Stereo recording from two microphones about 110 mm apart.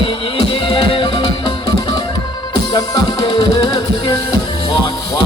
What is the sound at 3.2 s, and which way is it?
Music, 45° left (ahead or behind).